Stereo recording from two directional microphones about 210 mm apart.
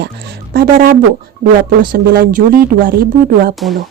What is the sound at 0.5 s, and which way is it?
Speech, 45° right (ahead or behind).